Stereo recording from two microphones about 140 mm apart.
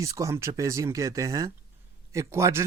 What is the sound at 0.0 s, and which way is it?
Speech, 25° right (ahead or behind).